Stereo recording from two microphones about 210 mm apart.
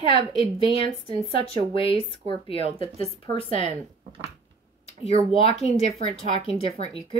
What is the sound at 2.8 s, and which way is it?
Speech, 30° right (ahead or behind).